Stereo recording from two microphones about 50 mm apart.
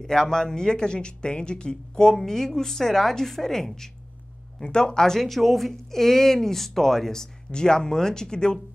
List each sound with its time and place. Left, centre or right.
0.0 s speech: centre